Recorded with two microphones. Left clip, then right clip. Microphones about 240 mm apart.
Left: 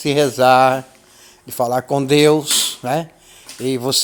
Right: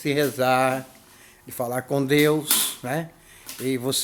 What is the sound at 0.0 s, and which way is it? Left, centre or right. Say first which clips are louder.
Speech: left 8 dB; left.